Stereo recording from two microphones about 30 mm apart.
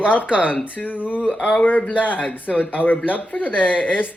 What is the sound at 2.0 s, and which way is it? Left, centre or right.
Speech, left.